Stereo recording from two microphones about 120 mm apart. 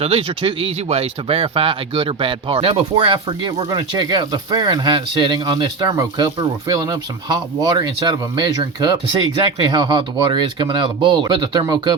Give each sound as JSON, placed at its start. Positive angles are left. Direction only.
{"t": 0.0, "sound": "speech", "side_deg": -50}